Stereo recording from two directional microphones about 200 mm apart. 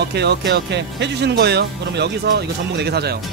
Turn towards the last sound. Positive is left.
turn(degrees=-55)  # may be behind; listen again after turning